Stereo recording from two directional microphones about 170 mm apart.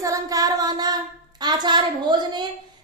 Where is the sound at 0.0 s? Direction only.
20° right (ahead or behind).